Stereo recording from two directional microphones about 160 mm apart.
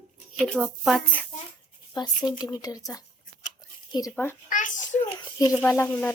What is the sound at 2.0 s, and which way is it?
Speech, 25° left (ahead or behind).